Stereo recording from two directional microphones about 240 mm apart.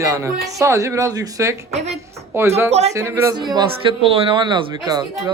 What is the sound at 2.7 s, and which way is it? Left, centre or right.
Speech, right.